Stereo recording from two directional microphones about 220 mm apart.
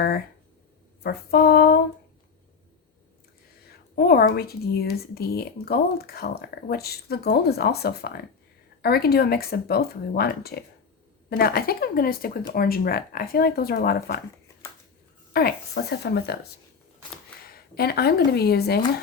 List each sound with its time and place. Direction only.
1.0 s speech: 45° left (ahead or behind)
3.9 s speech: 45° left (ahead or behind)
15.3 s speech: 45° left (ahead or behind)
17.7 s speech: 45° left (ahead or behind)